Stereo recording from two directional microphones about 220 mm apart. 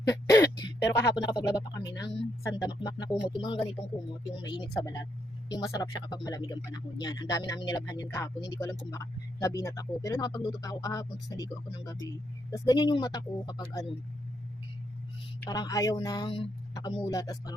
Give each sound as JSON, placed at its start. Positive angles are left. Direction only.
{"t": 0.1, "sound": "throat clearing", "side_deg": 15}
{"t": 0.9, "sound": "speech", "side_deg": 15}
{"t": 15.4, "sound": "speech", "side_deg": 15}